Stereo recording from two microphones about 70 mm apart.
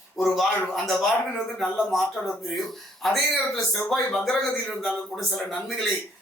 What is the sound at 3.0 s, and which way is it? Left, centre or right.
Speech, centre.